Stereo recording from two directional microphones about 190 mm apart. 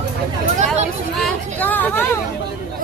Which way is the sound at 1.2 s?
5° left (ahead or behind).